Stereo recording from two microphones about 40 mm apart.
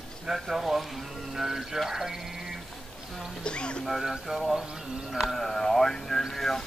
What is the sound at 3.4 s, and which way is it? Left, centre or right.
Speech, left.